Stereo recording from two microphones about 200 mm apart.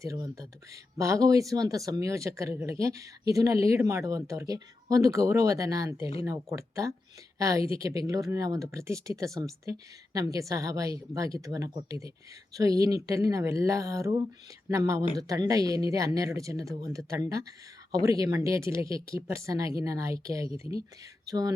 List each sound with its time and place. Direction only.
0.0 s speech: 15° right (ahead or behind)